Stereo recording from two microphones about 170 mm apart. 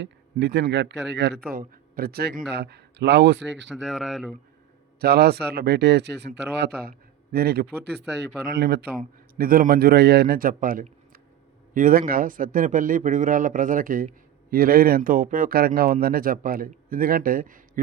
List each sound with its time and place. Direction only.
0.0 s a man's voice: 90° right
1.5 s speech: 60° right (ahead or behind); by 3.7 s 85° right
3.8 s speech: centre (ahead or behind)
4.9 s a man's voice: 70° right (ahead or behind)
7.3 s a man's voice: 65° right (ahead or behind)
9.0 s a man's voice: 60° right (ahead or behind)